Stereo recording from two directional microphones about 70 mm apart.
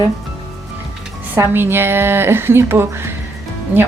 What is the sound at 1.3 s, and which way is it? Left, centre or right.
Speech, right.